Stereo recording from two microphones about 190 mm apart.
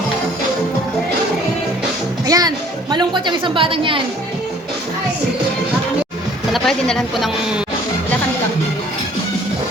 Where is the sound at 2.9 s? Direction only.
25° right (ahead or behind).